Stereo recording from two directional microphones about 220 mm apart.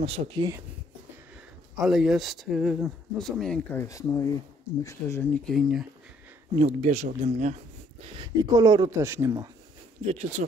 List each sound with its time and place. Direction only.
0.0 s speech: 25° right (ahead or behind)
1.8 s speech: centre (ahead or behind)
6.5 s speech: 30° right (ahead or behind)
8.2 s speech: 15° right (ahead or behind)
10.0 s speech: 30° right (ahead or behind)